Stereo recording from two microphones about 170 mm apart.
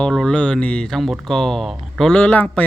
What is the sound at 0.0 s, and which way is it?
Speech, 5° left (ahead or behind).